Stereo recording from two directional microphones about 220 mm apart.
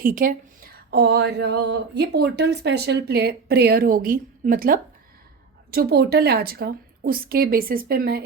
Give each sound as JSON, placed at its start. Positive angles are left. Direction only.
{"t": 0.0, "sound": "speech", "side_deg": -40}